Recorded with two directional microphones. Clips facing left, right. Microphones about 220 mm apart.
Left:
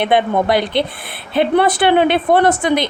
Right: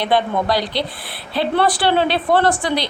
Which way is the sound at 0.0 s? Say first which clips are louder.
Left 3 dB; 20° left (ahead or behind).